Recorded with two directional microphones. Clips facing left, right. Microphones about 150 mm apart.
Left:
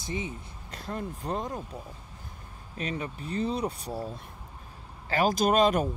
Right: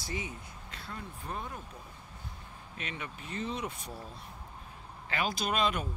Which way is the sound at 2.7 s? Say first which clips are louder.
Left 8 dB; 35° left (ahead or behind).